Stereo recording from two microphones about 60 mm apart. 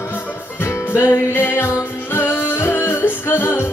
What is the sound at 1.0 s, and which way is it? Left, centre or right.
Music, left.